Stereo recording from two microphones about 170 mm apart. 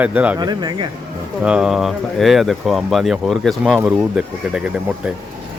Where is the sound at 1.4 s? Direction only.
5° right (ahead or behind).